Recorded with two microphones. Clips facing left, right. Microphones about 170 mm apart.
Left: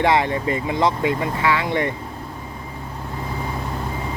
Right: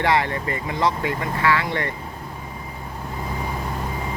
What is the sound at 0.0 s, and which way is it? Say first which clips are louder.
Speech: left 3 dB; 20° left (ahead or behind).